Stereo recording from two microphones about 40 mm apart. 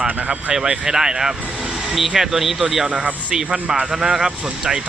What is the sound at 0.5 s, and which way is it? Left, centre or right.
Speech, centre.